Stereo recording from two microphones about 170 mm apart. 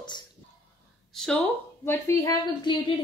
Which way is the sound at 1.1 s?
5° left (ahead or behind).